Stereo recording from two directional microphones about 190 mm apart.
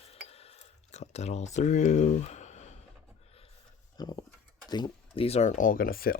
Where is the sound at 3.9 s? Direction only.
20° left (ahead or behind).